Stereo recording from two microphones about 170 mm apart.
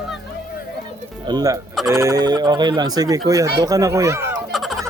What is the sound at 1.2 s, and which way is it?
Speech, 20° right (ahead or behind).